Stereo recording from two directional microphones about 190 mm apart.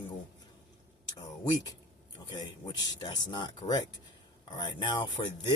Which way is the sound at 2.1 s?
20° left (ahead or behind).